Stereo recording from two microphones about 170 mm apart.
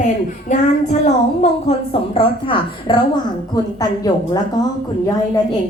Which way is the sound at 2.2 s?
30° left (ahead or behind).